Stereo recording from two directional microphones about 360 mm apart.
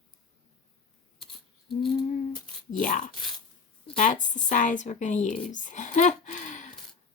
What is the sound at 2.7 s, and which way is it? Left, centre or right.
A woman's voice, left.